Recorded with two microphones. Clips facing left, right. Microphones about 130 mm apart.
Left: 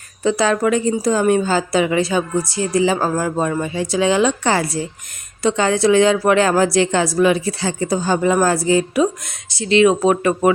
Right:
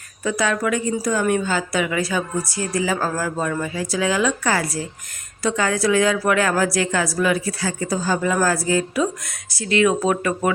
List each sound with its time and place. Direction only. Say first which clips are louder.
0.2 s a woman's voice: left 5 dB; 30° left (ahead or behind)